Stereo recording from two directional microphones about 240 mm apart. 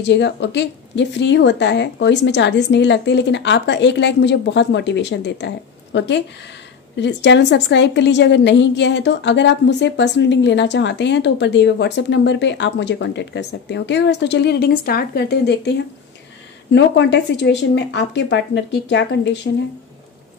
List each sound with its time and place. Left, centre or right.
0.0 s a woman's voice: left
16.7 s a woman's voice: left